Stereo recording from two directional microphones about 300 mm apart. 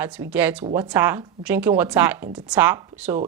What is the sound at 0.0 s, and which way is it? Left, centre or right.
Speech, centre.